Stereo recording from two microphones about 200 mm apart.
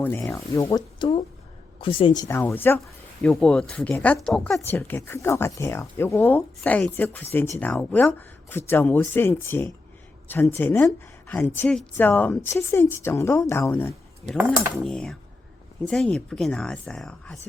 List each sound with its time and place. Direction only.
0.0 s a woman's voice: 10° left (ahead or behind)
14.3 s speech: 10° right (ahead or behind)
14.8 s speech: 5° left (ahead or behind)